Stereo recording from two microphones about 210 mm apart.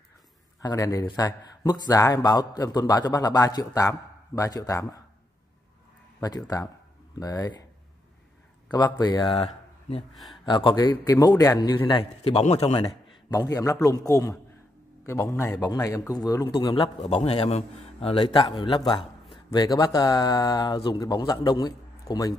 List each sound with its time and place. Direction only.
0.6 s a man's voice: 15° left (ahead or behind)
6.2 s a man's voice: 20° left (ahead or behind)
8.7 s a man's voice: 20° left (ahead or behind)
9.4 s a sound: 30° left (ahead or behind)
10.1 s speech: centre (ahead or behind)
10.4 s a man's voice: 20° left (ahead or behind)